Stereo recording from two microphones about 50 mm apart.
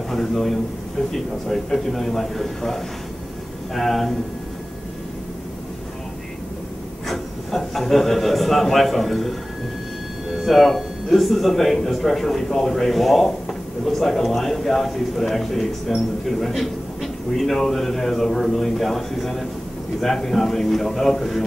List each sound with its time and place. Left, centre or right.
0.1 s a man's voice: centre
7.1 s speech: centre
10.3 s speech: centre